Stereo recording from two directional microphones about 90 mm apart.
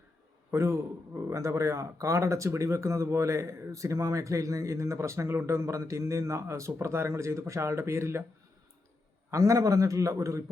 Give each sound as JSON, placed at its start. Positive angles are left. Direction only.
{"t": 0.5, "sound": "a man's voice", "side_deg": -30}
{"t": 9.3, "sound": "a man's voice", "side_deg": -35}